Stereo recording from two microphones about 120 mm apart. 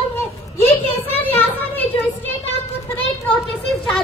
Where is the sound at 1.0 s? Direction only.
15° left (ahead or behind).